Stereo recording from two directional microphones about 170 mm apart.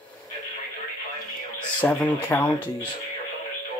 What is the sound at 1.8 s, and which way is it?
Speech, 10° left (ahead or behind).